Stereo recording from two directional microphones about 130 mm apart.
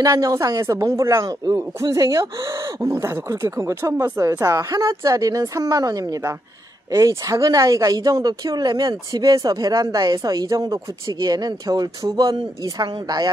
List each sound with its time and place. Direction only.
0.0 s speech: 25° right (ahead or behind)